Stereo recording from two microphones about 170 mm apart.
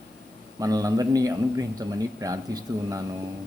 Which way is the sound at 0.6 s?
20° right (ahead or behind).